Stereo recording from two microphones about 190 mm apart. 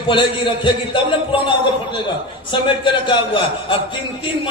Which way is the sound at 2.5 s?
25° left (ahead or behind).